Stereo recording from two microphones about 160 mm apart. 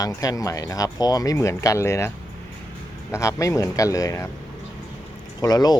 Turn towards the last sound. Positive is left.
turn(degrees=25)  # may be behind; listen again after turning